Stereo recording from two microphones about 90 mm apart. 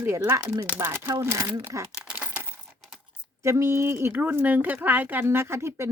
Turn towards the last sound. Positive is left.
turn(degrees=-30)  # may be behind; listen again after turning